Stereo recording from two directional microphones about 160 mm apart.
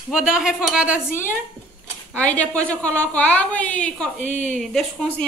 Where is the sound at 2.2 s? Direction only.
10° left (ahead or behind).